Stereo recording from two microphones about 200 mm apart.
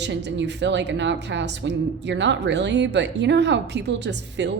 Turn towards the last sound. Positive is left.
turn(degrees=-60)  # may be behind; listen again after turning